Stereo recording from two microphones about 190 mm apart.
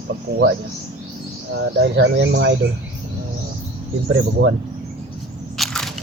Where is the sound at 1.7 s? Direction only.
70° right (ahead or behind).